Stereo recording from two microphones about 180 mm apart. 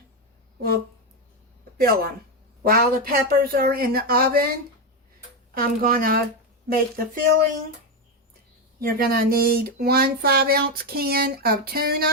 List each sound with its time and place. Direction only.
1.8 s speech: 55° right (ahead or behind)
5.5 s speech: 55° right (ahead or behind)
8.8 s speech: 55° right (ahead or behind)